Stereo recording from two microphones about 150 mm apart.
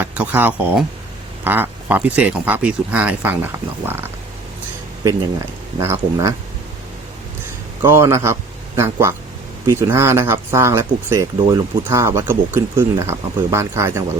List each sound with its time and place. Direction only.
0.0 s speech: 10° right (ahead or behind)
5.8 s speech: 20° right (ahead or behind)
7.8 s speech: 15° right (ahead or behind)